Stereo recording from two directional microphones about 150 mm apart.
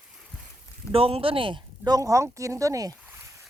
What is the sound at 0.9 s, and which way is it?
Speech, 40° right (ahead or behind).